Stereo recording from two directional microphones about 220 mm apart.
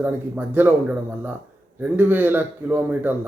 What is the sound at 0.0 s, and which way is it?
Speech, 10° right (ahead or behind).